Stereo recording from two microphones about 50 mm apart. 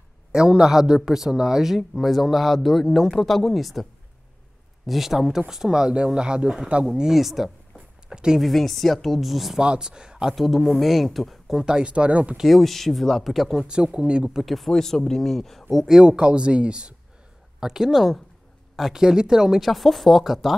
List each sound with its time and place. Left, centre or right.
0.3 s speech: centre
4.8 s speech: centre
8.4 s speech: centre
9.6 s speech: centre
10.3 s speech: centre
11.6 s speech: centre
12.4 s speech: centre
14.3 s speech: centre
15.8 s speech: centre
17.6 s speech: centre